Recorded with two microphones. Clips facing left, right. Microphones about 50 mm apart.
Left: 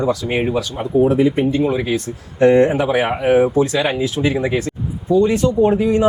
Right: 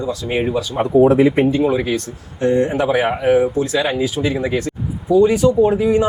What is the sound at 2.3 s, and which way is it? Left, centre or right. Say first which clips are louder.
Speech: left 5 dB; left.